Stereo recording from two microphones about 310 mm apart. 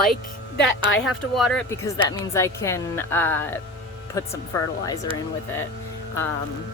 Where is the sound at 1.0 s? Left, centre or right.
Centre.